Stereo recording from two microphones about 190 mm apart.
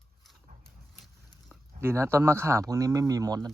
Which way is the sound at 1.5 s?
15° right (ahead or behind).